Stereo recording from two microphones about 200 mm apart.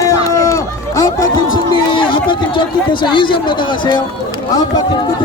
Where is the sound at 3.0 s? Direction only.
25° left (ahead or behind).